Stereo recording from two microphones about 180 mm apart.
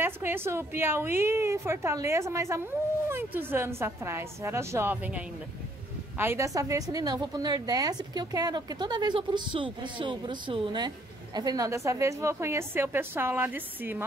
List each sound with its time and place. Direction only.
0.0 s a woman's voice: 10° right (ahead or behind)